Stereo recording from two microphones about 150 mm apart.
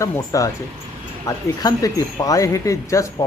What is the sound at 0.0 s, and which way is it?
Speech, 20° left (ahead or behind).